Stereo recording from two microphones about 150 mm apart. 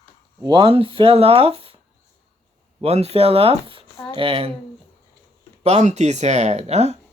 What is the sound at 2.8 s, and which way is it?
Speech, 45° right (ahead or behind).